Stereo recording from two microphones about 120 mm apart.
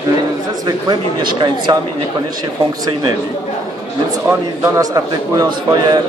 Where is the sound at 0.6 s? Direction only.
40° right (ahead or behind).